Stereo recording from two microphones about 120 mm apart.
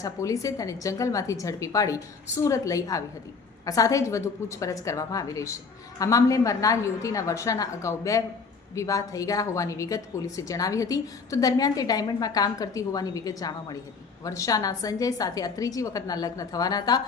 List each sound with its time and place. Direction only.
0.0 s a woman's voice: 30° left (ahead or behind)